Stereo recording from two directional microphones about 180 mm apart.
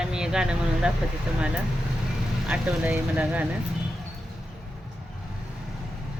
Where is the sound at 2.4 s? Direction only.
5° right (ahead or behind).